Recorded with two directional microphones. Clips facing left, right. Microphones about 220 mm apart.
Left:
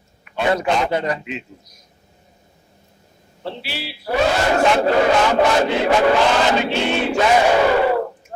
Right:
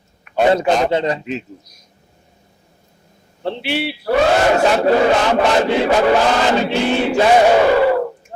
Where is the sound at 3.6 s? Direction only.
60° right (ahead or behind).